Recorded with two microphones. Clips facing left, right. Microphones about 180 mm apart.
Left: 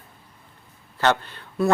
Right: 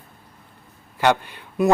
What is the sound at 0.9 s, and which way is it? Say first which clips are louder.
Speech: right 2 dB; 15° right (ahead or behind).